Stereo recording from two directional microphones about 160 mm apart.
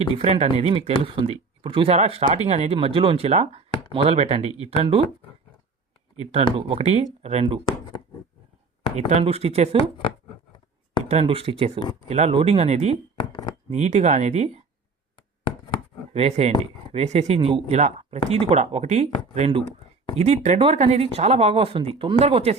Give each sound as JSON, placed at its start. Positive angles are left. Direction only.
{"t": 0.2, "sound": "speech", "side_deg": -40}
{"t": 6.6, "sound": "speech", "side_deg": -35}
{"t": 7.6, "sound": "a sound", "side_deg": 25}
{"t": 9.0, "sound": "speech", "side_deg": -45}
{"t": 11.1, "sound": "speech", "side_deg": -40}
{"t": 16.1, "sound": "speech", "side_deg": -40}